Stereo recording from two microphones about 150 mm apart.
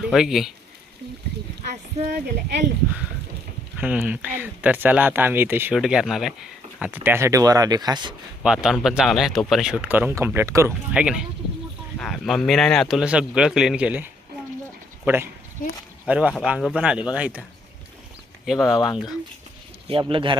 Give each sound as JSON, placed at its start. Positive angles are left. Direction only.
{"t": 0.0, "sound": "speech", "side_deg": 0}
{"t": 2.0, "sound": "a woman's voice", "side_deg": -90}
{"t": 3.8, "sound": "speech", "side_deg": -10}
{"t": 8.4, "sound": "speech", "side_deg": 0}
{"t": 10.9, "sound": "speech", "side_deg": -5}
{"t": 18.4, "sound": "speech", "side_deg": 0}
{"t": 19.9, "sound": "speech", "side_deg": -35}